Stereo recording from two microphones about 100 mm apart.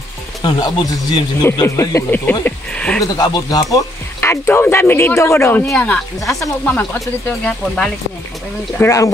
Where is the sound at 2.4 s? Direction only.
10° left (ahead or behind).